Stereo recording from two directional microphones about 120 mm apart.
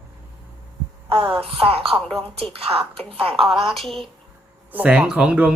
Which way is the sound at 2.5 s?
50° right (ahead or behind).